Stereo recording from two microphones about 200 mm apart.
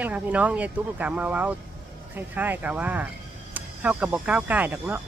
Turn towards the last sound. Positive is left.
turn(degrees=-10)  # may be behind; listen again after turning